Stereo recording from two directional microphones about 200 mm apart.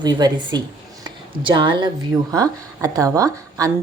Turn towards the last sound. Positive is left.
turn(degrees=-15)  # may be behind; listen again after turning